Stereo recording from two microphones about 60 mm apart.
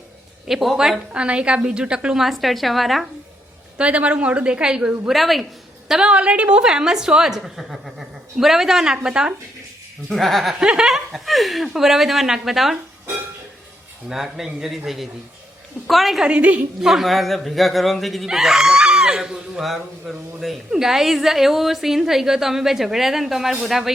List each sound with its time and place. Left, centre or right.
0.4 s speech: centre
1.1 s a woman's voice: centre
2.2 s speech: centre
3.8 s a woman's voice: right
5.1 s speech: centre
5.9 s a woman's voice: centre
10.1 s speech: centre
10.5 s speech: centre
14.1 s speech: centre
16.2 s a woman's voice: right
16.8 s speech: centre